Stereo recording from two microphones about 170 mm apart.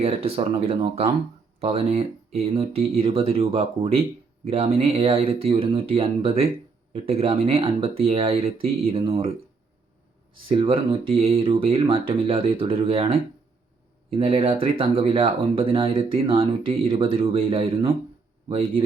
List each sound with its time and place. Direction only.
0.0 s speech: 35° right (ahead or behind)
10.5 s speech: 30° right (ahead or behind)